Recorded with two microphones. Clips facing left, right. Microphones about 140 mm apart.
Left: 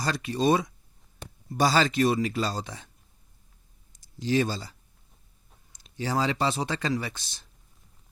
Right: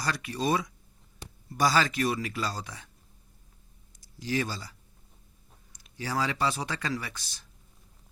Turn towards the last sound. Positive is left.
turn(degrees=25)  # may be behind; listen again after turning